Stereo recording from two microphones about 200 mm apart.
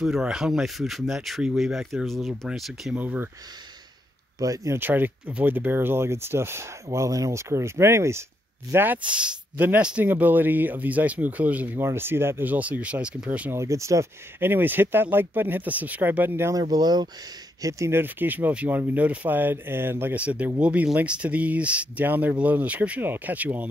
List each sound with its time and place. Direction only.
0.0 s speech: 5° right (ahead or behind)
4.4 s speech: 15° right (ahead or behind)